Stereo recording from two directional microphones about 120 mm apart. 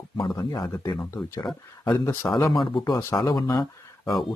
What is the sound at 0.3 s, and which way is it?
Speech, 30° left (ahead or behind).